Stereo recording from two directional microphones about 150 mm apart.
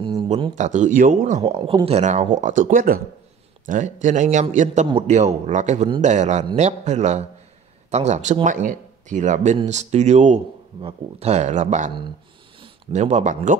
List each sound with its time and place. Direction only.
0.0 s a sound: 35° right (ahead or behind)
0.6 s a man's voice: 55° right (ahead or behind)
1.4 s speech: 35° right (ahead or behind); by 3.0 s 65° right (ahead or behind)
3.6 s a man's voice: 55° right (ahead or behind)
12.9 s speech: 50° right (ahead or behind)